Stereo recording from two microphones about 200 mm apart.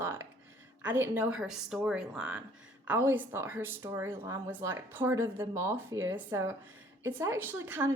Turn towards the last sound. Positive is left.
turn(degrees=-10)  # may be behind; listen again after turning